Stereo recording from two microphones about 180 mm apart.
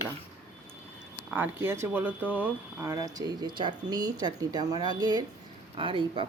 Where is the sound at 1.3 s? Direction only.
10° right (ahead or behind).